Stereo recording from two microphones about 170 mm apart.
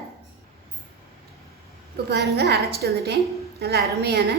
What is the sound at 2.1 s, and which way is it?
A woman's voice, 75° right (ahead or behind).